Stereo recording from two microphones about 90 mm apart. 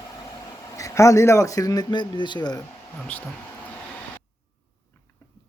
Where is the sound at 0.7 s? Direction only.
35° left (ahead or behind); by 2.6 s 55° left (ahead or behind).